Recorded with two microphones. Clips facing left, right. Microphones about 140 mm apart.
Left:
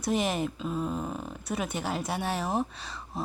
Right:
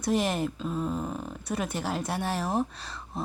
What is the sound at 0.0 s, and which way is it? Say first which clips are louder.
Speech: right 1 dB; centre (ahead or behind).